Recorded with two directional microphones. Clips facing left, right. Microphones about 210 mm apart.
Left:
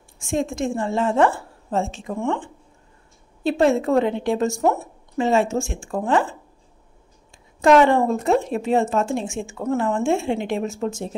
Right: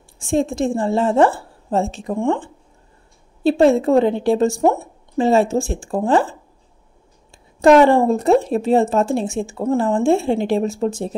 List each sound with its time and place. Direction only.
0.2 s speech: 35° right (ahead or behind)
3.4 s speech: 30° right (ahead or behind)
7.6 s speech: 35° right (ahead or behind)